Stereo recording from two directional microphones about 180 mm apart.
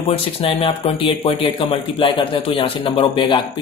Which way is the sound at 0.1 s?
30° left (ahead or behind).